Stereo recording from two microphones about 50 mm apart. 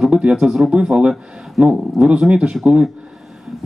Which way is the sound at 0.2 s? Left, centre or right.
Centre.